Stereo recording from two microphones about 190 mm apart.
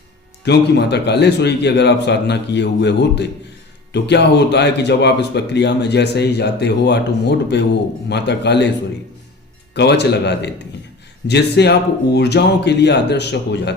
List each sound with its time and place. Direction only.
0.4 s speech: 60° left (ahead or behind)
9.7 s speech: 65° left (ahead or behind)